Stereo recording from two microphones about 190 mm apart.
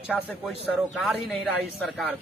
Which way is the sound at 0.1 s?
Centre (ahead or behind).